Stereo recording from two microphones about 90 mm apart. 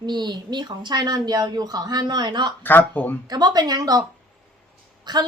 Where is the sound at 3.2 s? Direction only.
50° right (ahead or behind).